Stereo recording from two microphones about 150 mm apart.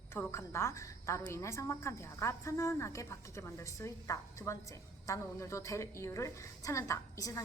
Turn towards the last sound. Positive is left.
turn(degrees=20)  # may be behind; listen again after turning